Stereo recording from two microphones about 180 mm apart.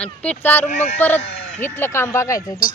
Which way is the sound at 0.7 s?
40° left (ahead or behind).